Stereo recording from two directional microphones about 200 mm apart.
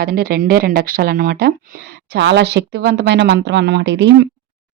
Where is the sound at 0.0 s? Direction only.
50° right (ahead or behind).